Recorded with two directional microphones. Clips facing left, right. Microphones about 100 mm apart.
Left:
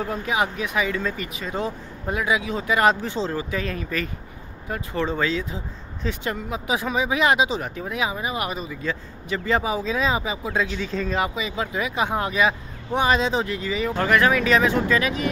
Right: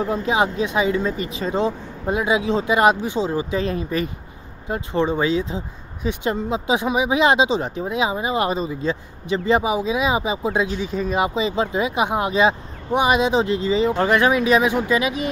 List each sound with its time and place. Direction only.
0.0 s speech: 25° right (ahead or behind)
11.3 s speech: 30° right (ahead or behind)